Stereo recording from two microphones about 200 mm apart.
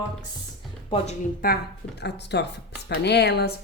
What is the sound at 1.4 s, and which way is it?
A woman's voice, 55° left (ahead or behind).